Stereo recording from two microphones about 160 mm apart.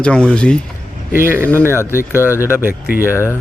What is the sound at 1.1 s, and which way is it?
Speech, 60° left (ahead or behind).